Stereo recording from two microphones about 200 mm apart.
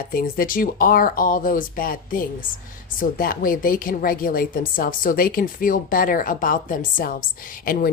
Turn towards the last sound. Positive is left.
turn(degrees=45)  # may be behind; listen again after turning